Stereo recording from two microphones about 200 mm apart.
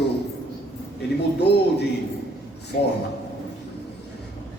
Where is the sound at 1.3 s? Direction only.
55° left (ahead or behind).